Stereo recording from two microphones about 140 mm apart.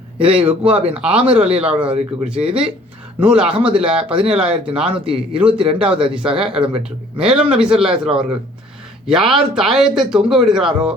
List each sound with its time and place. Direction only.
0.3 s speech: 10° right (ahead or behind)
0.8 s speech: 45° right (ahead or behind)
1.0 s speech: 10° right (ahead or behind)